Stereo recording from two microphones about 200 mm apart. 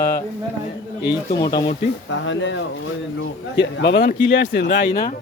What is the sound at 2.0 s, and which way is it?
Speech, 70° left (ahead or behind).